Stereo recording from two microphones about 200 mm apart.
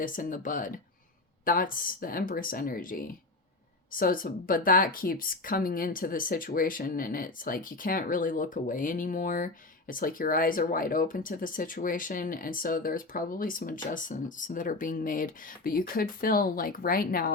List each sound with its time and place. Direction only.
0.0 s speech: 40° left (ahead or behind)